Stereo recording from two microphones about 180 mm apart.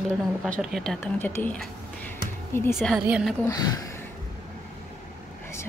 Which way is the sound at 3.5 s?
20° left (ahead or behind).